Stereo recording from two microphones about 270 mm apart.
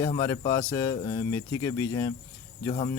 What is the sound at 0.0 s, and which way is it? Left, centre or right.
Speech, centre.